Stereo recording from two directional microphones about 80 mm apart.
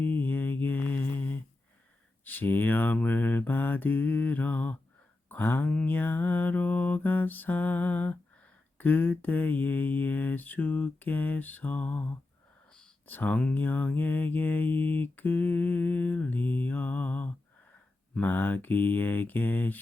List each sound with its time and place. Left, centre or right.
0.0 s mantra: left
5.3 s speech: left
5.7 s mantra: left